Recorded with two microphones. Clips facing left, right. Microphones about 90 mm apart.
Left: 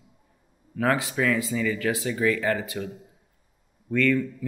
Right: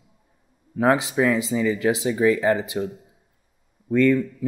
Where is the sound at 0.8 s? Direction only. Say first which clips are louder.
Right 5 dB; 20° right (ahead or behind).